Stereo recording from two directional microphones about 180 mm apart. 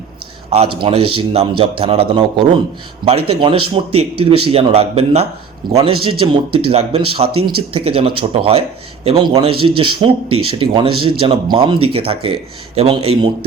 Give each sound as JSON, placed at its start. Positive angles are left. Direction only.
{"t": 0.5, "sound": "speech", "side_deg": -35}